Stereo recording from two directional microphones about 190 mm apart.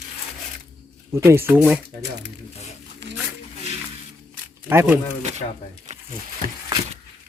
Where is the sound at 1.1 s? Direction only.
15° right (ahead or behind).